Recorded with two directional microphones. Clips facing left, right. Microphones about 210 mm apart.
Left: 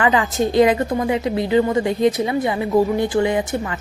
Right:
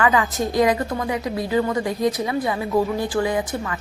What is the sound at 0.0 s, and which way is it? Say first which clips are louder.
A woman's voice: left 2 dB; 25° left (ahead or behind).